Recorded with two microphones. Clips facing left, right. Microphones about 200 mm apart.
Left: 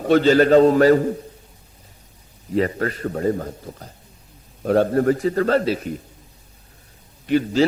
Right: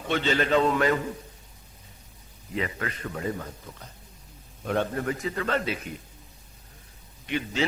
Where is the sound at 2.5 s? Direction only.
40° left (ahead or behind).